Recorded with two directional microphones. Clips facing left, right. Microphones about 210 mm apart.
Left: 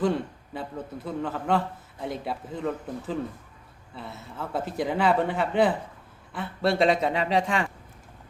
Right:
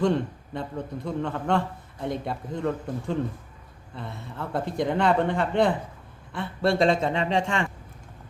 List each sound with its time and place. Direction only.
0.0 s a man's voice: 5° left (ahead or behind)